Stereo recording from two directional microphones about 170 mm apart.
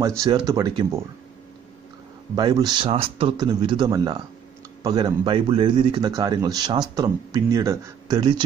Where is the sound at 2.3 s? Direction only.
25° right (ahead or behind).